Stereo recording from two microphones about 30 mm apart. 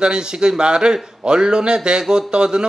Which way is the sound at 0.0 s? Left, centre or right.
Right.